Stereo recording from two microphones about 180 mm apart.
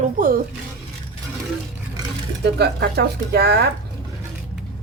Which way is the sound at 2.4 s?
65° right (ahead or behind).